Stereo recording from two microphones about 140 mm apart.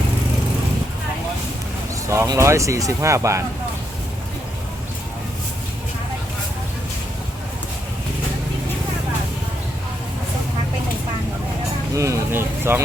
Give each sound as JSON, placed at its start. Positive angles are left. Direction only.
{"t": 2.0, "sound": "speech", "side_deg": -20}
{"t": 11.9, "sound": "speech", "side_deg": -20}